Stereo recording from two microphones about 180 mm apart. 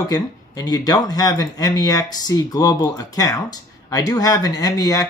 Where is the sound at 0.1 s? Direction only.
20° left (ahead or behind).